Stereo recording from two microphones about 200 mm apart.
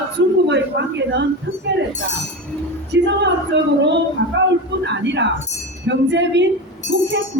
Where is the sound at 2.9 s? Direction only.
60° right (ahead or behind).